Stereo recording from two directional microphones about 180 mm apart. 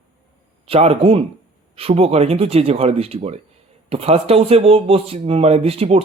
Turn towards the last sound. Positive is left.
turn(degrees=-35)  # may be behind; listen again after turning